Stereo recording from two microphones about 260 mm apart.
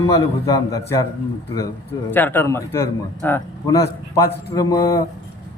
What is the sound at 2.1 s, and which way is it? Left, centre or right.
Speech, centre.